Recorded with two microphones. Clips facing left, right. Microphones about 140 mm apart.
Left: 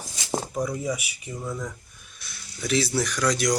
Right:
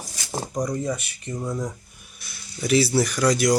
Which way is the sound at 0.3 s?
15° right (ahead or behind).